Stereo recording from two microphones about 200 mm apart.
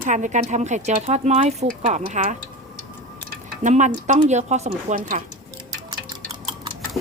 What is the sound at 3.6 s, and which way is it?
Speech, 35° right (ahead or behind).